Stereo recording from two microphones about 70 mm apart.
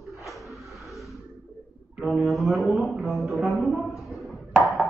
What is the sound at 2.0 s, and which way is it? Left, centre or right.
A man's voice, centre.